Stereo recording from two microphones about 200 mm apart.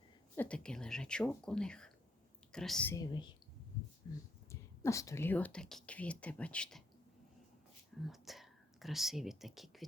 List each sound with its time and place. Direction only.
0.3 s a woman's voice: 5° left (ahead or behind)
2.9 s speech: 20° left (ahead or behind); by 6.8 s 5° left (ahead or behind)
8.0 s speech: centre (ahead or behind)